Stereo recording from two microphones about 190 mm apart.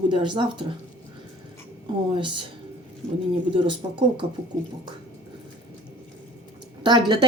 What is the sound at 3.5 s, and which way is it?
Speech, 25° right (ahead or behind).